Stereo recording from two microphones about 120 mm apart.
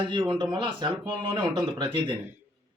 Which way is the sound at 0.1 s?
40° right (ahead or behind).